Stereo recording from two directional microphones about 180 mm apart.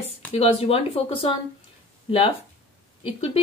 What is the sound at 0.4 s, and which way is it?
Speech, 35° left (ahead or behind).